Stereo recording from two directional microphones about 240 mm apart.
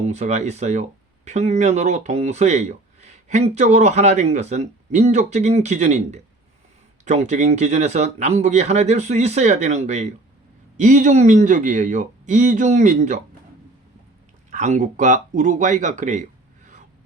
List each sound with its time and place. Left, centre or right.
0.0 s speech: right
14.5 s speech: right